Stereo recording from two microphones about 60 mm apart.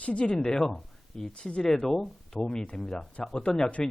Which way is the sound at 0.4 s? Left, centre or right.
Centre.